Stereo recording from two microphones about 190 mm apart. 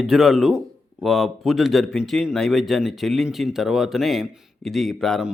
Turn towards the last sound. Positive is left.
turn(degrees=0)  # may be behind; listen again after turning